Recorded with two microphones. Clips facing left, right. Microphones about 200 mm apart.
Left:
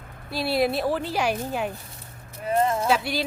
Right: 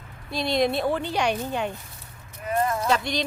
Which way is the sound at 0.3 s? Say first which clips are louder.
Even; 5° left (ahead or behind).